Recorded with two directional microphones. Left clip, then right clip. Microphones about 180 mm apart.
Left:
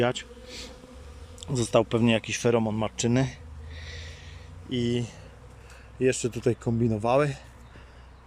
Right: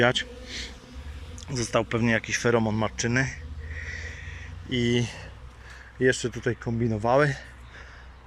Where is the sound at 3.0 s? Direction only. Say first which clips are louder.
Right 1 dB; 20° left (ahead or behind).